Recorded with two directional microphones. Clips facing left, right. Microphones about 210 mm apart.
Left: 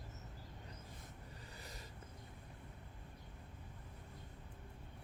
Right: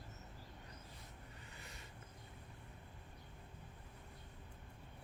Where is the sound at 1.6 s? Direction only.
35° left (ahead or behind).